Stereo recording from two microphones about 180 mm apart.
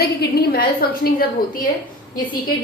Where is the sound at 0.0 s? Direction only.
60° left (ahead or behind).